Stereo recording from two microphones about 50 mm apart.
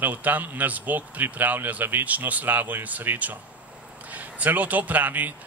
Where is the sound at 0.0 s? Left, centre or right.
Right.